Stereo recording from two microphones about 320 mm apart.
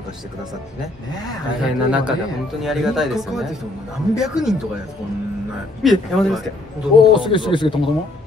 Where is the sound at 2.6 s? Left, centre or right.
Centre.